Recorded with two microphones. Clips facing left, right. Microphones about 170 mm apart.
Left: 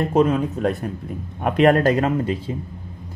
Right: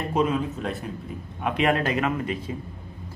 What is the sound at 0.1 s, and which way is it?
Speech, 45° left (ahead or behind).